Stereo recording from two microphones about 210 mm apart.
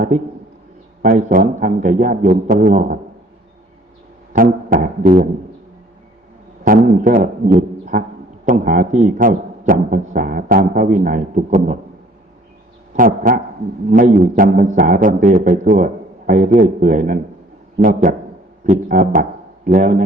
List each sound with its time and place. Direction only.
1.0 s speech: 40° right (ahead or behind)
4.3 s speech: 40° right (ahead or behind)
6.7 s speech: 40° right (ahead or behind)
12.9 s speech: 40° right (ahead or behind)